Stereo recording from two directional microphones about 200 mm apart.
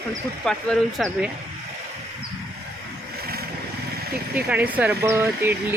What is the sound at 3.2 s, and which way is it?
Vehicle, 50° right (ahead or behind).